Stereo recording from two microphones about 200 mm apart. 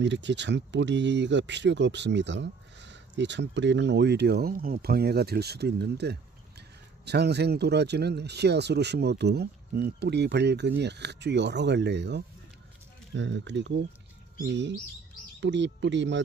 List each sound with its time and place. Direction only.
0.0 s speech: 60° right (ahead or behind)